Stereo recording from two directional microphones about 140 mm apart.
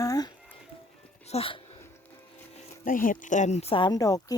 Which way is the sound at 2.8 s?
75° left (ahead or behind).